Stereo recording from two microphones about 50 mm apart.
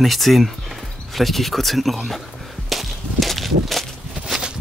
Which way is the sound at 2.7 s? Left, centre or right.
Centre.